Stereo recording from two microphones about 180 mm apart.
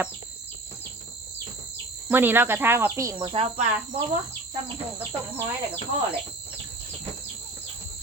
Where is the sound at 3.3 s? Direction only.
35° right (ahead or behind).